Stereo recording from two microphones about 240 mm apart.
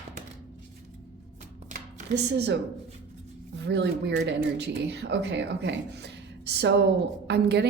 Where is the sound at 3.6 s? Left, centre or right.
Right.